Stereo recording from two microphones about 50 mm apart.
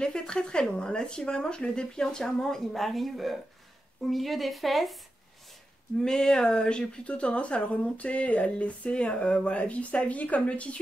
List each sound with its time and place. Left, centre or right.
0.0 s speech: centre
5.9 s speech: centre; by 10.8 s left